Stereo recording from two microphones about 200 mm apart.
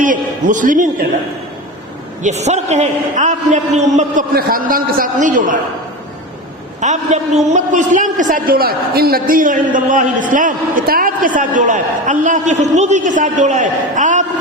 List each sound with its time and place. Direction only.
0.0 s a man's voice: 40° right (ahead or behind)
2.2 s a man's voice: 35° right (ahead or behind)
6.7 s a man's voice: 35° right (ahead or behind)